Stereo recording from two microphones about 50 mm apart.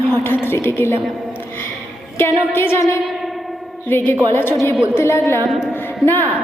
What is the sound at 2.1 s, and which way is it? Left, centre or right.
Speech, left.